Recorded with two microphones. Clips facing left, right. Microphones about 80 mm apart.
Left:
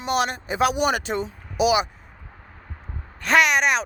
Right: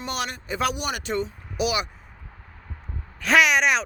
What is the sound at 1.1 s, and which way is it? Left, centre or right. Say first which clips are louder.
Speech: even; centre.